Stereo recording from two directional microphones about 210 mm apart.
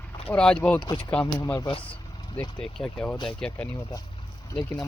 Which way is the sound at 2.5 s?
5° left (ahead or behind).